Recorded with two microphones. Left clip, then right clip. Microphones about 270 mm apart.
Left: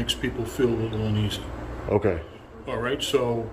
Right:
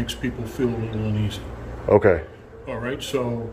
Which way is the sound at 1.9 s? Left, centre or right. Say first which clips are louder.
Right 8 dB; centre.